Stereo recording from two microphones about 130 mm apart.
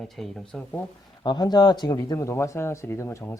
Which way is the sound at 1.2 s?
30° left (ahead or behind).